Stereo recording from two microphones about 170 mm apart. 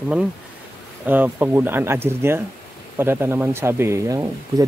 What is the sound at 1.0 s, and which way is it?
Speech, 10° right (ahead or behind).